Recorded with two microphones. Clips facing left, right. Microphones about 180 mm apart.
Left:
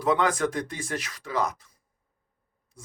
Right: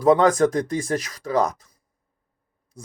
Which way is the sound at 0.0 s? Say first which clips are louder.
Right 8 dB; 40° right (ahead or behind).